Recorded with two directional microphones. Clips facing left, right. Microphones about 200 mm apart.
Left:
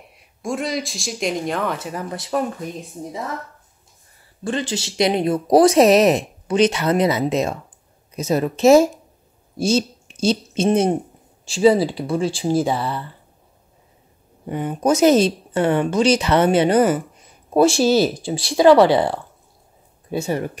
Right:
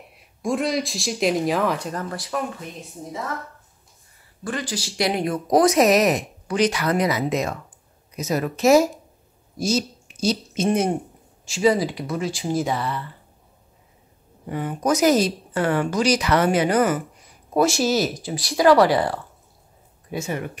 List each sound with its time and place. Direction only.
0.1 s speech: centre (ahead or behind)
2.0 s speech: 25° left (ahead or behind)
4.5 s speech: 25° left (ahead or behind)
14.4 s speech: 25° left (ahead or behind)